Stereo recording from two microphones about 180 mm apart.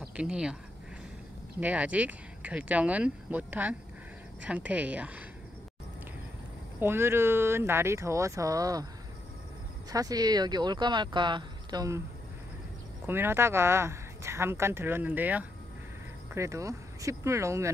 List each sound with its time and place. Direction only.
0.0 s speech: 5° right (ahead or behind)
1.6 s speech: 10° right (ahead or behind)
6.8 s speech: 15° right (ahead or behind)
9.8 s speech: 20° right (ahead or behind)
13.0 s speech: 10° right (ahead or behind)